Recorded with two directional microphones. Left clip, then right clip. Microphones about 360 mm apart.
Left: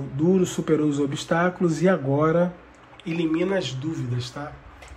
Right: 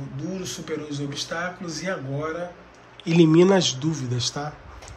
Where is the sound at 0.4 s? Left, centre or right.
Centre.